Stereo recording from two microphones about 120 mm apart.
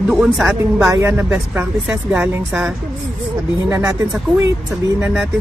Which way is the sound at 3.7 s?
25° right (ahead or behind).